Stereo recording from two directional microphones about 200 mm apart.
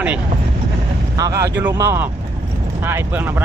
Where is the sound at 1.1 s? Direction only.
15° right (ahead or behind).